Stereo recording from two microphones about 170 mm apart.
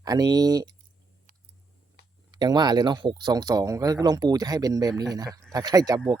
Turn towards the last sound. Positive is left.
turn(degrees=-20)  # may be behind; listen again after turning